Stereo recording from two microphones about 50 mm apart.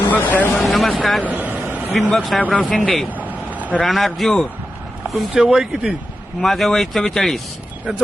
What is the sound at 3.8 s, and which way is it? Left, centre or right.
Speech, centre.